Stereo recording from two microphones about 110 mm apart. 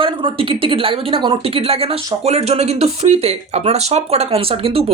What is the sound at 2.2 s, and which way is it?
Speech, 70° right (ahead or behind).